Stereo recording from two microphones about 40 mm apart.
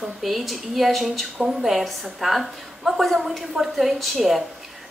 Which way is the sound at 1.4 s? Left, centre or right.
Centre.